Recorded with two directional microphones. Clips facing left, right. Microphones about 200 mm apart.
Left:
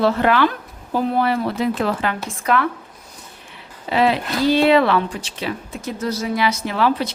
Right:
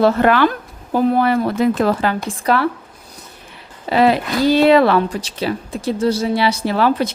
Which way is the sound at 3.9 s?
45° right (ahead or behind).